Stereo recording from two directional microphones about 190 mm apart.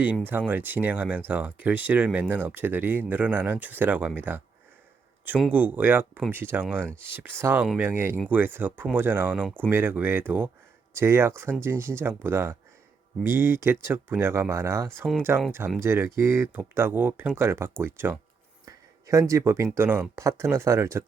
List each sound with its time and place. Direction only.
0.3 s speech: 10° right (ahead or behind)
5.2 s speech: 10° right (ahead or behind)